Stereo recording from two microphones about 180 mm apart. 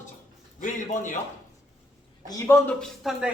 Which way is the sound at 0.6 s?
45° left (ahead or behind).